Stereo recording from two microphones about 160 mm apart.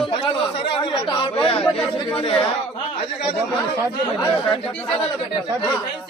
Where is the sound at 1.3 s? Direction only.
35° left (ahead or behind).